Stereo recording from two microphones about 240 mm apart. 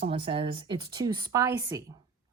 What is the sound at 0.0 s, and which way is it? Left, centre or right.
A woman's voice, right.